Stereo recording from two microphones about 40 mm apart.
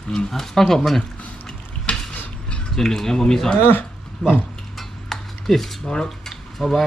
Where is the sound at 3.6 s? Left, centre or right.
Left.